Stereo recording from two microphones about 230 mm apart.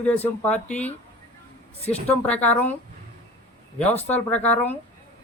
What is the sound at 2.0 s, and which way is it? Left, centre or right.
Speech, centre.